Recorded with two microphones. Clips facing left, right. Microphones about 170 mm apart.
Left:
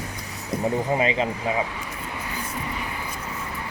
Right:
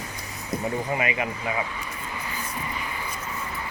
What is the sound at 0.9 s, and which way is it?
Speech, 25° left (ahead or behind).